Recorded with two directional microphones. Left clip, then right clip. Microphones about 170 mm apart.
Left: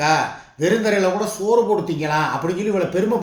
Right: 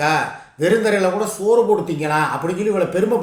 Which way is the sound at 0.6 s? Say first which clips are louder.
Right 2 dB; 15° right (ahead or behind).